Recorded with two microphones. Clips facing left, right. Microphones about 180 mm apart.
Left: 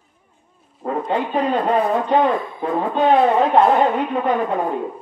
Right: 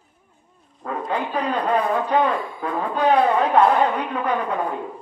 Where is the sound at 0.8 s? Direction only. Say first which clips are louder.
Left 4 dB; 25° left (ahead or behind).